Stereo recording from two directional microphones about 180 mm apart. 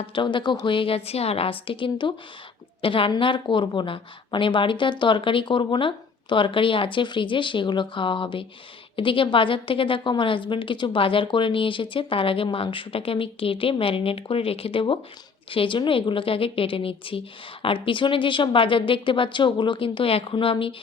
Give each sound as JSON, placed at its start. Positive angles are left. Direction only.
{"t": 0.0, "sound": "a woman's voice", "side_deg": 30}